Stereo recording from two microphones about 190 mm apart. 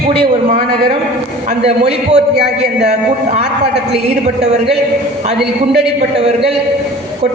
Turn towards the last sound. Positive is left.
turn(degrees=0)  # may be behind; listen again after turning